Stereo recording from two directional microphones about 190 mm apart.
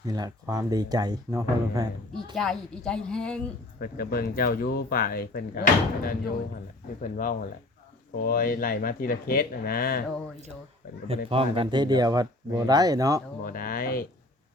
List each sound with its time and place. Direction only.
0.0 s speech: 20° right (ahead or behind)
2.3 s speech: centre (ahead or behind)
3.8 s speech: 50° left (ahead or behind)
11.3 s speech: 30° right (ahead or behind)
13.4 s speech: 50° left (ahead or behind)